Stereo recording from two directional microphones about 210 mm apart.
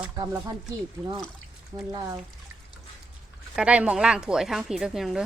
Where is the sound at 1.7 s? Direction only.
15° right (ahead or behind).